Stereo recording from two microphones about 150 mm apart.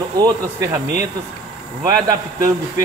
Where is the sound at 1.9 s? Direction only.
20° right (ahead or behind).